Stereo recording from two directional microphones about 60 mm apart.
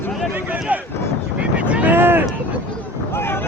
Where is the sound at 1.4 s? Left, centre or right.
Right.